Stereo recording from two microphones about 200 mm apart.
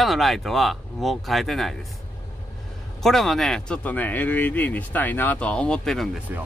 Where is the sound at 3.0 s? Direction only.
Centre (ahead or behind).